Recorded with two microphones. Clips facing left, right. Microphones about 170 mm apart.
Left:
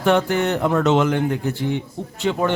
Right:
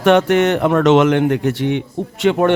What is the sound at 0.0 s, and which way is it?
Speech, 85° right.